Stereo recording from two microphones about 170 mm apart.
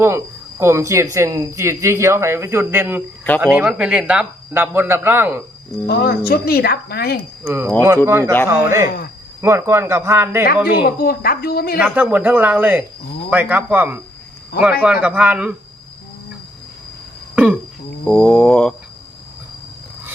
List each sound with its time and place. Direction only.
0.6 s speech: 15° right (ahead or behind)
5.8 s speech: 70° left (ahead or behind)
7.4 s speech: 15° right (ahead or behind)
11.0 s a woman's voice: 65° left (ahead or behind)
11.8 s speech: 10° right (ahead or behind)
17.3 s throat clearing: 5° right (ahead or behind)
18.0 s a sound: 5° left (ahead or behind)